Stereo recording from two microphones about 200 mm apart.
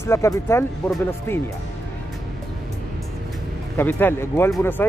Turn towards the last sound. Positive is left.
turn(degrees=15)  # may be behind; listen again after turning